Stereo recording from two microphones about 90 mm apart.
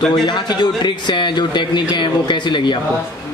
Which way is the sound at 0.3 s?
55° left (ahead or behind).